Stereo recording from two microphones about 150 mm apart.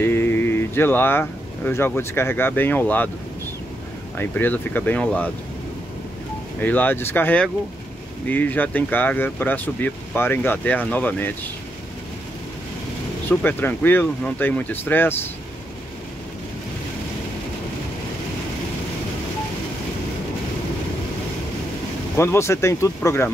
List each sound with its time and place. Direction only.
0.0 s a sound: 15° left (ahead or behind)
1.7 s speech: 15° left (ahead or behind)
4.2 s speech: 10° left (ahead or behind)
6.6 s speech: 10° left (ahead or behind)
13.3 s speech: 10° left (ahead or behind)
22.1 s speech: 15° left (ahead or behind)